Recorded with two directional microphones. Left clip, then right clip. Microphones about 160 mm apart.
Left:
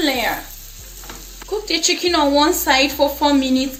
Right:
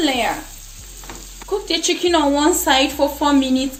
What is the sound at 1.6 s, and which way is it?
Speech, 50° right (ahead or behind).